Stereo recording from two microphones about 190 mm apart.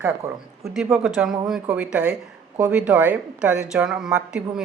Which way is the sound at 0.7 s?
Centre (ahead or behind).